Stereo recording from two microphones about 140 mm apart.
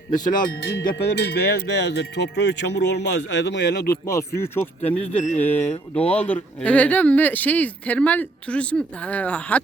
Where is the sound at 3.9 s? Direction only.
20° left (ahead or behind).